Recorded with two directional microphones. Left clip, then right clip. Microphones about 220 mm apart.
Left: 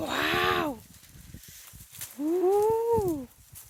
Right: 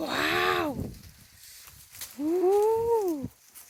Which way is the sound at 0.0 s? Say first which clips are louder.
Even; 5° right (ahead or behind).